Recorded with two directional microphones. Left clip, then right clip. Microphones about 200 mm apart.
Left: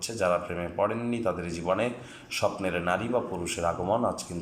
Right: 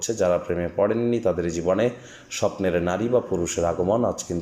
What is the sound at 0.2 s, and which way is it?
A man's voice, 20° right (ahead or behind).